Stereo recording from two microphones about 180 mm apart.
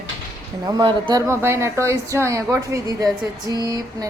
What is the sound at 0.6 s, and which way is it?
A woman's voice, 25° right (ahead or behind).